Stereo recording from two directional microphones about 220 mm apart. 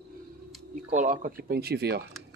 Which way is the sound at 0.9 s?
35° right (ahead or behind).